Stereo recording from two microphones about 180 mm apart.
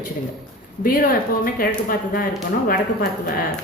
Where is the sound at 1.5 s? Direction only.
50° left (ahead or behind).